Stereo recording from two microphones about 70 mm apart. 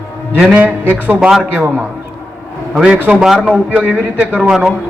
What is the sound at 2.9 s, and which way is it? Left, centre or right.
Speech, right.